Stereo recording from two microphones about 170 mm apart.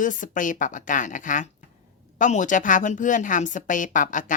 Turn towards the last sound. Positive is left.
turn(degrees=50)  # may be behind; listen again after turning